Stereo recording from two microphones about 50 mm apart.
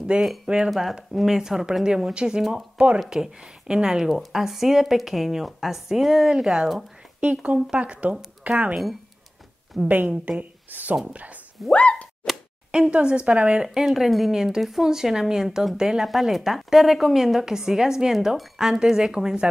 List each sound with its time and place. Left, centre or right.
0.1 s a woman's voice: right
0.7 s a woman's voice: centre; by 3.0 s right
3.1 s a woman's voice: centre
4.1 s a woman's voice: centre
7.2 s a woman's voice: right
9.8 s a woman's voice: right
10.7 s a sound: right
11.7 s a sound: left
12.9 s a woman's voice: right
13.7 s a woman's voice: centre